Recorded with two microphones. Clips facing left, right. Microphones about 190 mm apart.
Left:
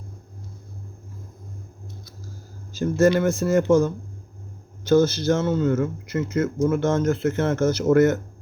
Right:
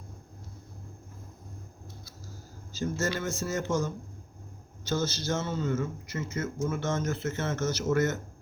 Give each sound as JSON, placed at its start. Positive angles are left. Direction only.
{"t": 2.7, "sound": "speech", "side_deg": 55}